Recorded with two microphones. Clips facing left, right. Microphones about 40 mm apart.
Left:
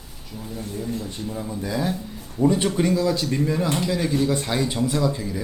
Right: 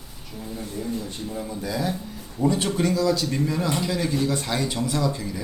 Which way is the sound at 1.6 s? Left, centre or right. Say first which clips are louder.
Left 2 dB; left.